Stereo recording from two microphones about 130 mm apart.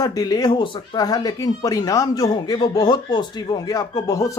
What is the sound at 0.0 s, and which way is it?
Speech, 30° left (ahead or behind).